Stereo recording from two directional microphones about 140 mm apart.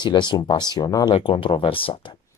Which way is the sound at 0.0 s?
35° left (ahead or behind).